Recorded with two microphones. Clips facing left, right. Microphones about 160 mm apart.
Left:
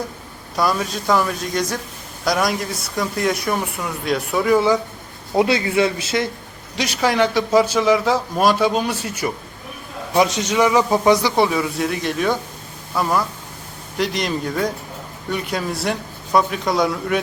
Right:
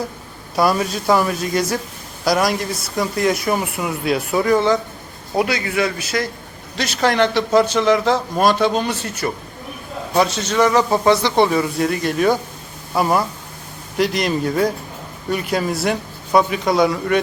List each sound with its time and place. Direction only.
0.5 s speech: 5° right (ahead or behind)
5.4 s speech: 25° left (ahead or behind)
6.7 s a man's voice: 15° left (ahead or behind)
13.0 s speech: 15° right (ahead or behind)
14.0 s speech: 5° right (ahead or behind)